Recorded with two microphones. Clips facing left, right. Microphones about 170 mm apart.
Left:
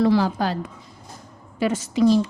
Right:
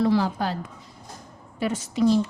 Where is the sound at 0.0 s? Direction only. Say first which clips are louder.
Left 3 dB; 90° left.